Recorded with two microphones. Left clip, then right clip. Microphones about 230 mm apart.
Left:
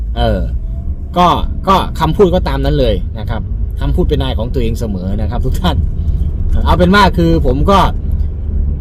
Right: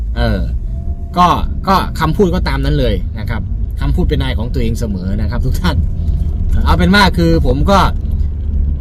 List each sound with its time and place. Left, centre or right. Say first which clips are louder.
0.2 s a man's voice: left 3 dB; centre
4.6 s speech: left 1 dB; right
4.9 s a man's voice: left 2 dB; centre